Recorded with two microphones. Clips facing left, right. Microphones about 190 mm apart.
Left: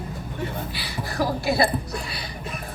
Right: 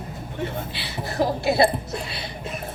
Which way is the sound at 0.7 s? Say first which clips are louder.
Right 2 dB; 25° right (ahead or behind).